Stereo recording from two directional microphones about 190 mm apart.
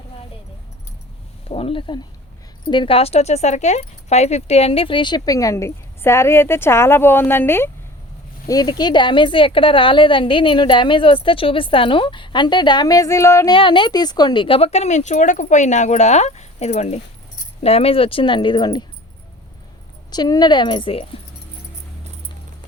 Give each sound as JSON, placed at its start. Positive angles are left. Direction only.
{"t": 1.5, "sound": "speech", "side_deg": 30}
{"t": 13.5, "sound": "speech", "side_deg": 25}
{"t": 20.1, "sound": "speech", "side_deg": 20}